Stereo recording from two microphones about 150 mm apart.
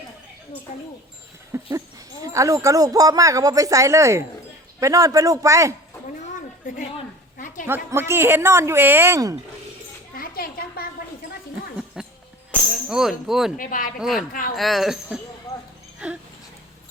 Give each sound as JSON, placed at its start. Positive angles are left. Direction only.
{"t": 1.5, "sound": "speech", "side_deg": -15}
{"t": 7.3, "sound": "a sound", "side_deg": 60}
{"t": 7.7, "sound": "speech", "side_deg": -15}
{"t": 10.2, "sound": "a sound", "side_deg": 75}
{"t": 12.0, "sound": "goat", "side_deg": -5}
{"t": 12.9, "sound": "a woman's voice", "side_deg": -5}
{"t": 13.6, "sound": "speech", "side_deg": 65}
{"t": 14.0, "sound": "a woman's voice", "side_deg": 0}
{"t": 15.5, "sound": "a sound", "side_deg": 20}
{"t": 16.0, "sound": "dog", "side_deg": -10}